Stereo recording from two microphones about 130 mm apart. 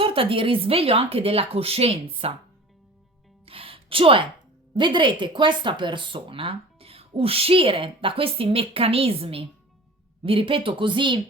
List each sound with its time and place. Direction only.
0.0 s speech: 45° right (ahead or behind)
3.4 s music: 45° right (ahead or behind)
4.7 s speech: 40° right (ahead or behind)